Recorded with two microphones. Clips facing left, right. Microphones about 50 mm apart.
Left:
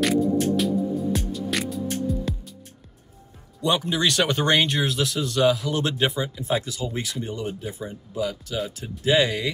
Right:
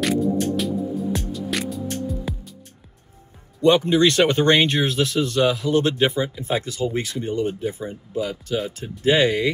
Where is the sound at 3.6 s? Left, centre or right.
Right.